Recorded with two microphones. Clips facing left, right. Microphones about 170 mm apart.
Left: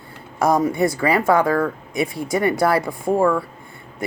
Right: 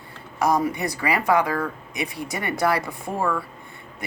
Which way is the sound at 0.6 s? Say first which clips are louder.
Left 6 dB; 25° left (ahead or behind).